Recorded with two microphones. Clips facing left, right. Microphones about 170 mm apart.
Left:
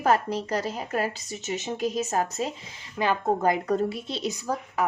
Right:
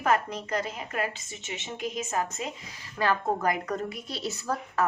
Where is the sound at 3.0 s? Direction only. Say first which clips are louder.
Left 2 dB; 20° left (ahead or behind).